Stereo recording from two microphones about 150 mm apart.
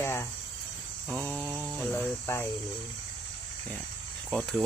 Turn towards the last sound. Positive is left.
turn(degrees=5)  # may be behind; listen again after turning